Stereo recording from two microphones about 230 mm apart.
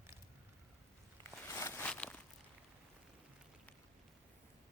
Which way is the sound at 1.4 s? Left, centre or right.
Centre.